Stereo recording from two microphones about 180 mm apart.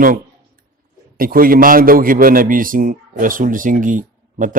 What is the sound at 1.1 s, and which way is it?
A man's voice, 55° right (ahead or behind).